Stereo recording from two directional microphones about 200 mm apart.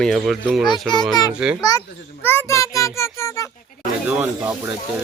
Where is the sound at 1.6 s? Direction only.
20° left (ahead or behind).